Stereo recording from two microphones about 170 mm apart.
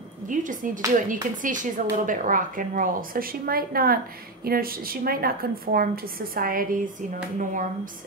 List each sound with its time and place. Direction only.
0.3 s speech: 50° right (ahead or behind)